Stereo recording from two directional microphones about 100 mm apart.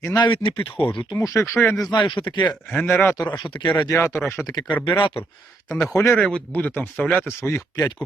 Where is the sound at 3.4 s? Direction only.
50° left (ahead or behind).